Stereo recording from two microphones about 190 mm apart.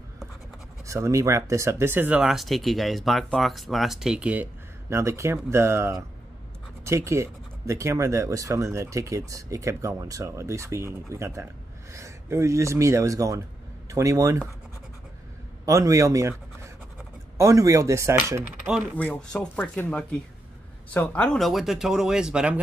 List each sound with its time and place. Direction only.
0.8 s speech: 15° right (ahead or behind)
15.6 s speech: 15° right (ahead or behind)
18.9 s speech: 5° left (ahead or behind)